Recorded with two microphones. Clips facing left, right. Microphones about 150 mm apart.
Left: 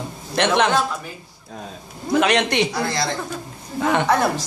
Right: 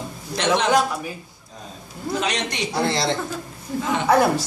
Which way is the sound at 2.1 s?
60° left (ahead or behind).